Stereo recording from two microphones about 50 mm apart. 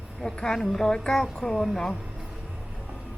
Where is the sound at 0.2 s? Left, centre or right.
Centre.